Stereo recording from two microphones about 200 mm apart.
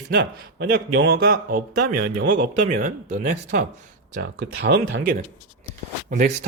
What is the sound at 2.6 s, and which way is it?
Speech, 40° right (ahead or behind).